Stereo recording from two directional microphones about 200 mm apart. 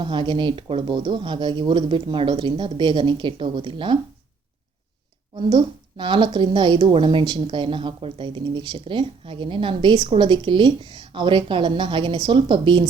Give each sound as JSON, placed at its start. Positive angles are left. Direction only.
{"t": 0.0, "sound": "a woman's voice", "side_deg": -25}
{"t": 5.5, "sound": "a woman's voice", "side_deg": -25}